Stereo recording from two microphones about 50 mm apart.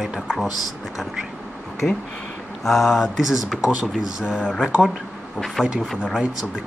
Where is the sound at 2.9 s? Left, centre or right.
Centre.